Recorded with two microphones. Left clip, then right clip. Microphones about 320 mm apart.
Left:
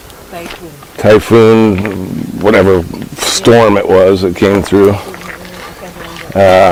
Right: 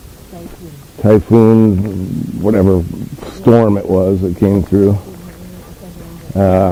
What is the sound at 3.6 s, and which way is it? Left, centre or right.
Speech, centre.